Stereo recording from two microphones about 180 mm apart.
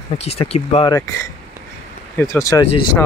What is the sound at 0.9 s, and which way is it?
Speech, 15° left (ahead or behind).